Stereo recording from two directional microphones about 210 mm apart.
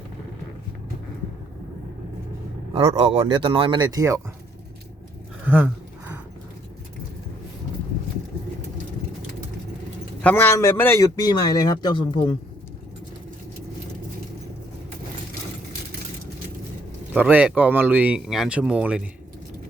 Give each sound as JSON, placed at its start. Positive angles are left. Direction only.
{"t": 2.7, "sound": "speech", "side_deg": -25}
{"t": 5.5, "sound": "a sound", "side_deg": -10}
{"t": 10.2, "sound": "a man's voice", "side_deg": 10}
{"t": 17.2, "sound": "speech", "side_deg": -5}